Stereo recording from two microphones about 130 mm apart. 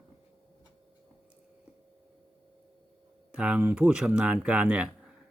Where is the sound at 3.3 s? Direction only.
10° right (ahead or behind).